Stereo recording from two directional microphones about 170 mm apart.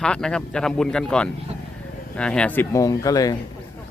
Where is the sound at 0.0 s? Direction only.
5° left (ahead or behind); by 3.3 s 20° left (ahead or behind).